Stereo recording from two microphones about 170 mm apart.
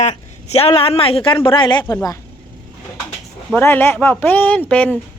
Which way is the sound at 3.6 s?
10° left (ahead or behind).